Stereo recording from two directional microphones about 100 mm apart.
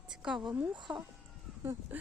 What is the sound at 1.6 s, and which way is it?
Speech, 25° right (ahead or behind).